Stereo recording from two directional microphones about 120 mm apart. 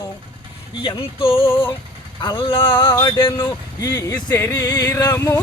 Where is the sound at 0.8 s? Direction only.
50° left (ahead or behind).